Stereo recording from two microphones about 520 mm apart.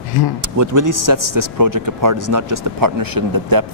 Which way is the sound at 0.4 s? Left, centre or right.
Right.